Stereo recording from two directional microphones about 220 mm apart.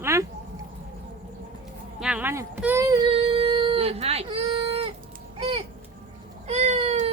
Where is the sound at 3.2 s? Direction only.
25° right (ahead or behind).